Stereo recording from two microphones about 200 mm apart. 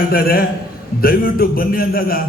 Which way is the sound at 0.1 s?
50° left (ahead or behind).